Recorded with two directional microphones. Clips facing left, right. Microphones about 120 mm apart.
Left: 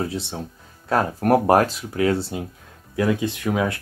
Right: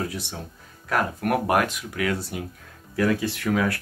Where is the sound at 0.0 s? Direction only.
30° left (ahead or behind).